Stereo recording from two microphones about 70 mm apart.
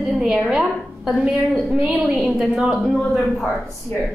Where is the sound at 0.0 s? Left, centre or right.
Centre.